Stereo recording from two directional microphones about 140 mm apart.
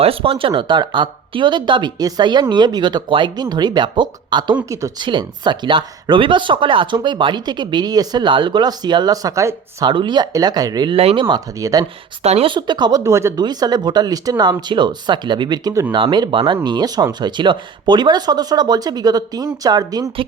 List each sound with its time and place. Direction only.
0.0 s speech: 40° right (ahead or behind); by 9.9 s 20° right (ahead or behind)
9.9 s speech: 35° right (ahead or behind)
10.9 s speech: 40° right (ahead or behind); by 11.9 s 25° right (ahead or behind)
12.2 s speech: 50° right (ahead or behind)
12.5 s speech: 30° right (ahead or behind)
13.0 s speech: 20° right (ahead or behind)